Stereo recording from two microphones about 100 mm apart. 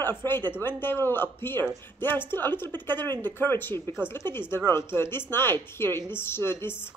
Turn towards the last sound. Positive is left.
turn(degrees=25)  # may be behind; listen again after turning